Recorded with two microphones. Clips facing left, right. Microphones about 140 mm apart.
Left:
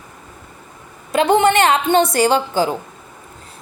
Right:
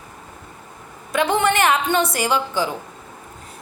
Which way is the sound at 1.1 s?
25° left (ahead or behind).